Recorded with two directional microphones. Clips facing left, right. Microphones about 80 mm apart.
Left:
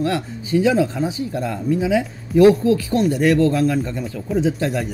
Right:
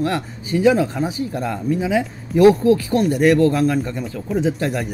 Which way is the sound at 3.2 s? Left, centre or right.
Right.